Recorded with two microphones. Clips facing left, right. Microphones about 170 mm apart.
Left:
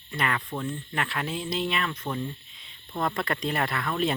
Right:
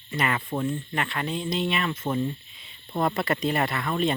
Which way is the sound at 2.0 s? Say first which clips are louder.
Right 5 dB; 25° right (ahead or behind).